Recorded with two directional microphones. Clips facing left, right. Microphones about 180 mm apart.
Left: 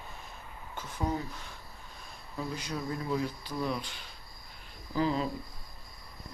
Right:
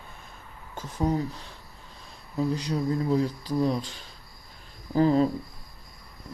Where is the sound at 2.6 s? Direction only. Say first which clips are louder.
Right 8 dB; 35° right (ahead or behind).